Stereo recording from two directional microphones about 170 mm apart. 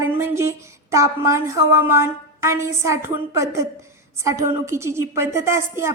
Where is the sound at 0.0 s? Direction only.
15° right (ahead or behind).